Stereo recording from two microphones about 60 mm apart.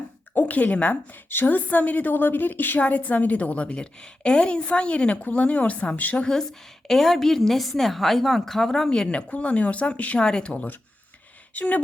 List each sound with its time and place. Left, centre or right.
0.3 s a woman's voice: left
6.2 s a woman's voice: centre; by 11.8 s left